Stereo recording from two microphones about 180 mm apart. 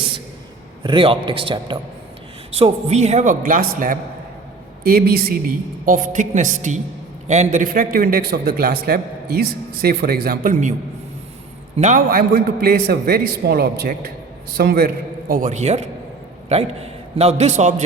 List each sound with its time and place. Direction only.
0.8 s a man's voice: 30° right (ahead or behind); by 5.4 s 60° right (ahead or behind)
5.8 s a man's voice: 45° right (ahead or behind)
11.8 s a man's voice: 45° right (ahead or behind)